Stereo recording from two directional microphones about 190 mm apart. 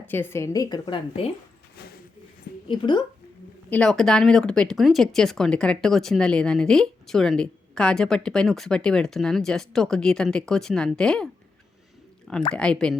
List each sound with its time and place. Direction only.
0.0 s a woman's voice: 10° left (ahead or behind); by 1.3 s 25° left (ahead or behind)
2.6 s a woman's voice: 25° left (ahead or behind)
3.7 s speech: 5° left (ahead or behind)
12.5 s speech: 5° left (ahead or behind)